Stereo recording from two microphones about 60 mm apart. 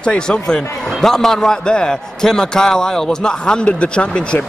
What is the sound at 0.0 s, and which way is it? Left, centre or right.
A man's voice, centre.